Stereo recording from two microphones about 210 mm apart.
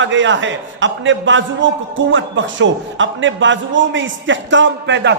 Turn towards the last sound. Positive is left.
turn(degrees=-60)  # may be behind; listen again after turning